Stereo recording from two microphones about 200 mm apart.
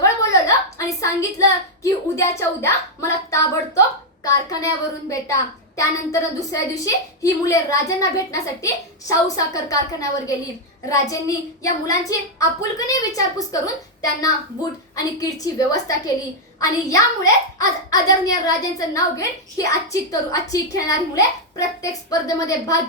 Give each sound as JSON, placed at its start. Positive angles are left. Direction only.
{"t": 0.0, "sound": "a sound", "side_deg": 15}
{"t": 2.4, "sound": "speech", "side_deg": 15}
{"t": 13.1, "sound": "speech", "side_deg": 15}